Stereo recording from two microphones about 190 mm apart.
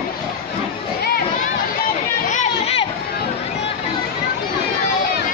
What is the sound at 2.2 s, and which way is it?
Chatter, 35° left (ahead or behind).